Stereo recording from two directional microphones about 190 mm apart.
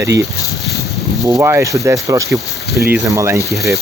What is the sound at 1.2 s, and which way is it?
Speech, 15° right (ahead or behind).